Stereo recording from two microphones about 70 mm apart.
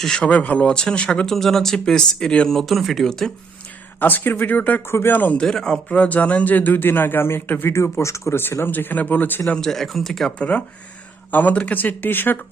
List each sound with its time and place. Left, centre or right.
0.0 s speech: centre
2.6 s speech: centre
4.0 s a man's voice: left
4.9 s a man's voice: left
5.4 s a man's voice: centre; by 7.8 s left
7.8 s speech: left
9.6 s speech: centre
10.3 s a man's voice: centre